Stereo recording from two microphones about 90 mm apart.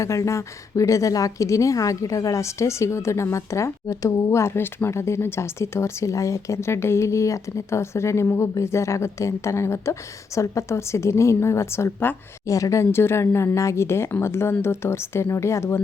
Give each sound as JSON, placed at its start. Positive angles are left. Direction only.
{"t": 0.0, "sound": "a woman's voice", "side_deg": 35}
{"t": 12.5, "sound": "speech", "side_deg": 40}